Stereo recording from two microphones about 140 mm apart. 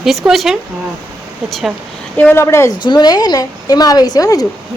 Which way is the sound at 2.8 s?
30° left (ahead or behind).